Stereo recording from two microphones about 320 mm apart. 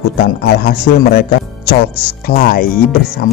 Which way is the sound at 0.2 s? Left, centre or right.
Left.